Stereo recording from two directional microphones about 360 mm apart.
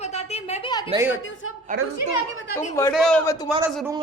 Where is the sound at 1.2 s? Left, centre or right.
Left.